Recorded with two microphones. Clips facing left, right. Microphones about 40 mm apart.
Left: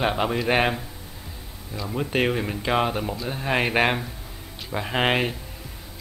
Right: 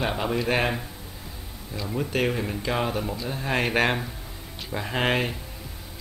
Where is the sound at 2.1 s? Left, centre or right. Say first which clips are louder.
Left 3 dB; left.